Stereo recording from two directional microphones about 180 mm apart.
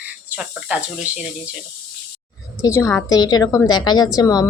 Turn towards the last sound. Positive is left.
turn(degrees=20)  # may be behind; listen again after turning